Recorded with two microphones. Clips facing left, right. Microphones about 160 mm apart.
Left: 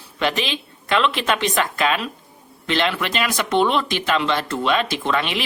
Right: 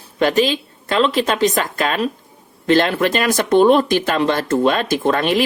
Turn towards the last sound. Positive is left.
turn(degrees=-45)  # may be behind; listen again after turning